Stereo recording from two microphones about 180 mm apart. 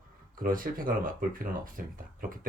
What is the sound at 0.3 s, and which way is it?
Speech, 50° right (ahead or behind).